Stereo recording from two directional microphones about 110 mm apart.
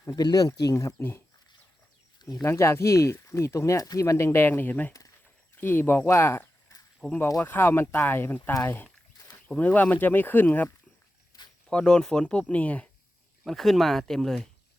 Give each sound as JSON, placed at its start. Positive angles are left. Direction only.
{"t": 0.1, "sound": "speech", "side_deg": 40}
{"t": 2.4, "sound": "speech", "side_deg": 25}
{"t": 11.3, "sound": "a sound", "side_deg": 35}
{"t": 11.7, "sound": "speech", "side_deg": 10}
{"t": 13.4, "sound": "speech", "side_deg": 5}